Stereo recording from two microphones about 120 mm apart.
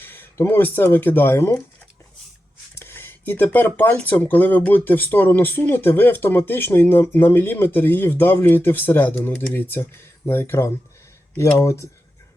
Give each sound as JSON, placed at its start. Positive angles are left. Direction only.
{"t": 0.0, "sound": "speech", "side_deg": 20}
{"t": 2.7, "sound": "speech", "side_deg": 20}